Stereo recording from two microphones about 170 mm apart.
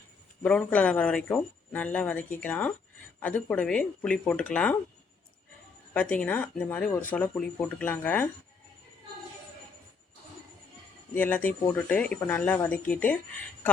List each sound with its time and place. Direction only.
0.4 s speech: 10° left (ahead or behind)
5.9 s speech: 10° left (ahead or behind)
11.1 s speech: 10° left (ahead or behind)